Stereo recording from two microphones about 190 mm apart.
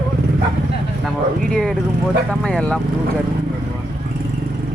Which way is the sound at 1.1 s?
Centre (ahead or behind).